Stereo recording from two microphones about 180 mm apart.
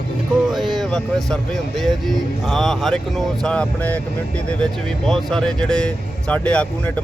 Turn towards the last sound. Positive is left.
turn(degrees=5)  # may be behind; listen again after turning